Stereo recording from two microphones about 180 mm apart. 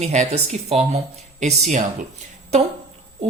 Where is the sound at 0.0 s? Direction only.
40° right (ahead or behind).